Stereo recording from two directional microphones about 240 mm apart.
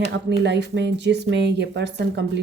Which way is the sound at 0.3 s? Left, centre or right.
Right.